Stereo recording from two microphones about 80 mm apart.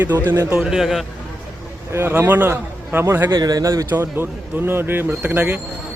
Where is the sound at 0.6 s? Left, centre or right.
Centre.